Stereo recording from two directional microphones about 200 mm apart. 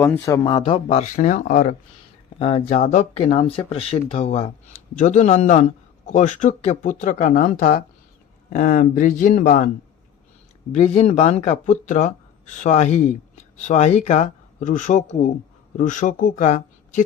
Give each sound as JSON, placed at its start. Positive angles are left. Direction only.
{"t": 0.0, "sound": "speech", "side_deg": 15}
{"t": 0.6, "sound": "speech", "side_deg": 30}
{"t": 10.8, "sound": "speech", "side_deg": 35}